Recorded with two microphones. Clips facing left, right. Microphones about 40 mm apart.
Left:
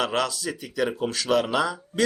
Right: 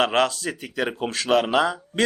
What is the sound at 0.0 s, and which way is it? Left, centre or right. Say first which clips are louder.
A man's voice: right 5 dB; right.